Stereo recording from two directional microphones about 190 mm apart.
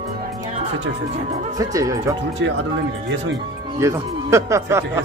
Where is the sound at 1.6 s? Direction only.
15° right (ahead or behind).